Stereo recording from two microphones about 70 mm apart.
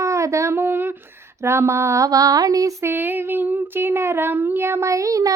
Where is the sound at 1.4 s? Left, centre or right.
Right.